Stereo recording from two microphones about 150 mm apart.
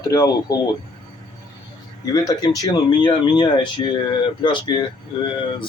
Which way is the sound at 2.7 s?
35° left (ahead or behind).